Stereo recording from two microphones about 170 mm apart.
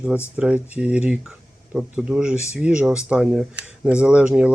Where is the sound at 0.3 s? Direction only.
5° right (ahead or behind).